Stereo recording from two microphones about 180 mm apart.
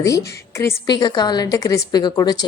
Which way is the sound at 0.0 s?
15° left (ahead or behind).